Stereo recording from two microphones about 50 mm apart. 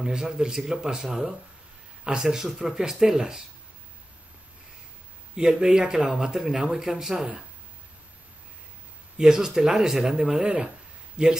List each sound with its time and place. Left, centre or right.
0.0 s speech: centre
5.3 s speech: centre
9.2 s speech: centre
10.4 s speech: right